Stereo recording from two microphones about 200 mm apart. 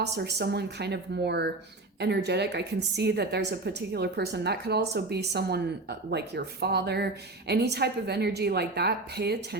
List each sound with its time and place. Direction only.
0.0 s a woman's voice: 55° right (ahead or behind)